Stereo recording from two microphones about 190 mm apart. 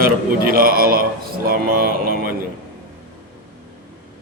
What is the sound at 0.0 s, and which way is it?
A man's voice, 50° right (ahead or behind).